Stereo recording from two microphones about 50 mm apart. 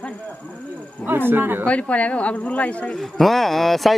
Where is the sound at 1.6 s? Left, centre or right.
Left.